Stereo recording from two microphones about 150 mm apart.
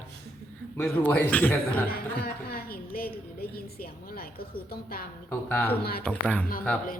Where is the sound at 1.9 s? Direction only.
85° left.